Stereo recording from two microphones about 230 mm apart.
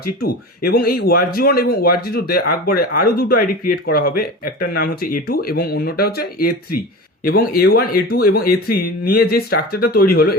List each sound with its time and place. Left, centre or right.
0.2 s speech: left